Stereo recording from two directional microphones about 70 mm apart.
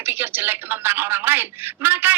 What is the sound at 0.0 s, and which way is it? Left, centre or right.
Speech, right.